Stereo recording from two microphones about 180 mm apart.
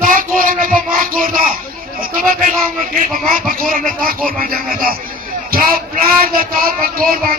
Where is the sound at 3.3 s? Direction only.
50° right (ahead or behind).